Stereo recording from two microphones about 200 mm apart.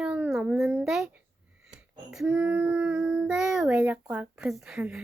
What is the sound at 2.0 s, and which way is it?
Child singing, 10° right (ahead or behind).